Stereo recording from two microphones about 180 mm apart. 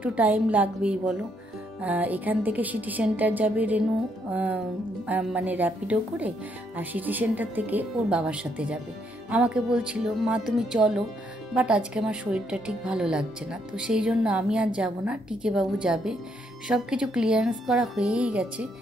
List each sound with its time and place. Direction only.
0.0 s speech: 10° right (ahead or behind)